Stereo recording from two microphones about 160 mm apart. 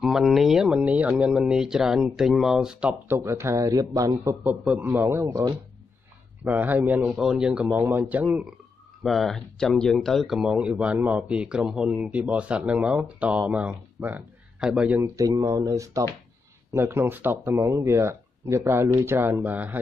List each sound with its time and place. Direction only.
0.0 s a man's voice: centre (ahead or behind); by 5.6 s 20° right (ahead or behind)
6.4 s speech: 10° right (ahead or behind)
15.0 s a man's voice: 20° right (ahead or behind)